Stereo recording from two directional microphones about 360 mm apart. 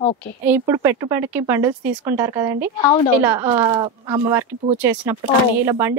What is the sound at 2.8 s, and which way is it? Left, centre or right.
Speech, centre.